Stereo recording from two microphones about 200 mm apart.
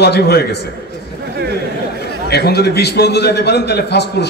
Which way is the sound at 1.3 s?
55° right (ahead or behind).